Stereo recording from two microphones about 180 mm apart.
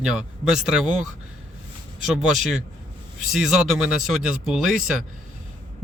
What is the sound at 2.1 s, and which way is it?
Speech, 5° right (ahead or behind).